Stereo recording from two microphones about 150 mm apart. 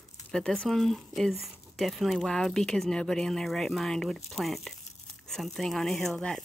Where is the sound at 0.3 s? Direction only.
5° left (ahead or behind).